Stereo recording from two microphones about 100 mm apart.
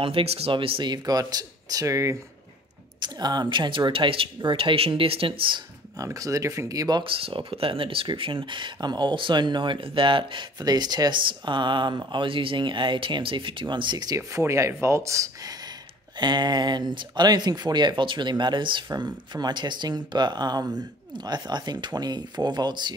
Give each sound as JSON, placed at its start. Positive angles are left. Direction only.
{"t": 0.0, "sound": "speech", "side_deg": -75}
{"t": 0.9, "sound": "speech", "side_deg": -40}
{"t": 3.0, "sound": "speech", "side_deg": -45}
{"t": 5.9, "sound": "speech", "side_deg": -35}
{"t": 7.0, "sound": "speech", "side_deg": -65}
{"t": 10.6, "sound": "speech", "side_deg": -45}
{"t": 16.2, "sound": "speech", "side_deg": -45}